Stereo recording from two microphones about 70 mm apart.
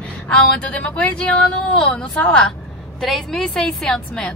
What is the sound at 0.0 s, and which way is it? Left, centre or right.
Speech, centre.